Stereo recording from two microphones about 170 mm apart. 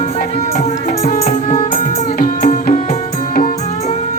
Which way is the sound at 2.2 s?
55° left (ahead or behind).